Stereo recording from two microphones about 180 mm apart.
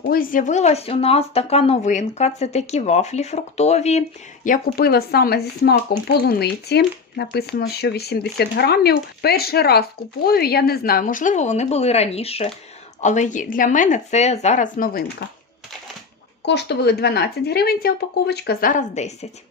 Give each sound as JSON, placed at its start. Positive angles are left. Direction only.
{"t": 0.0, "sound": "speech", "side_deg": 55}
{"t": 4.4, "sound": "speech", "side_deg": 55}
{"t": 16.5, "sound": "speech", "side_deg": 70}
{"t": 18.7, "sound": "speech", "side_deg": 40}